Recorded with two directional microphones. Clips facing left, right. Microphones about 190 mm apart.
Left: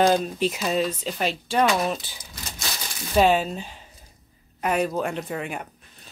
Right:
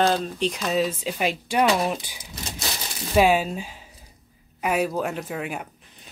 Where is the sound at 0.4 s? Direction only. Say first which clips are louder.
Even; 5° left (ahead or behind).